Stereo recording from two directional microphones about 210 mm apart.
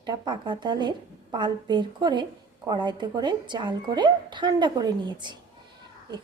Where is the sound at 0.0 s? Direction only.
20° right (ahead or behind).